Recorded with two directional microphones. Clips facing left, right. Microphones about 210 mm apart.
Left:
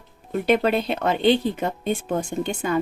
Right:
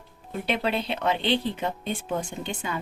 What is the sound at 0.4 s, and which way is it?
Speech, 45° left (ahead or behind).